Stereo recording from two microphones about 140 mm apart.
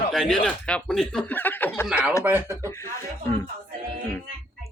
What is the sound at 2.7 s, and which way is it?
Speech, 20° left (ahead or behind).